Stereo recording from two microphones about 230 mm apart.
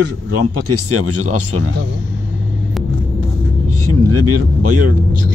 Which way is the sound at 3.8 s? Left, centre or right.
Right.